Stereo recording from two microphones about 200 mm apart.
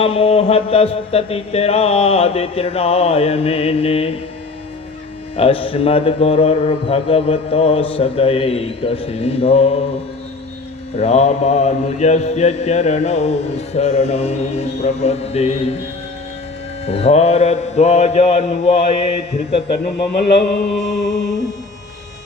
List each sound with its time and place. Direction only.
0.0 s a man's voice: 30° left (ahead or behind)
5.4 s a man's voice: 30° left (ahead or behind)
10.9 s music: 30° left (ahead or behind)
16.8 s music: 30° left (ahead or behind)
20.5 s music: 60° left (ahead or behind)